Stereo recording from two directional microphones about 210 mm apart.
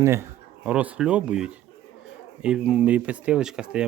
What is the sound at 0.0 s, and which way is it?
Speech, 10° right (ahead or behind).